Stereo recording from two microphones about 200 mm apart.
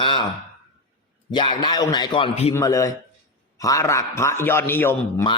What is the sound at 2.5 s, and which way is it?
A man's voice, 15° left (ahead or behind).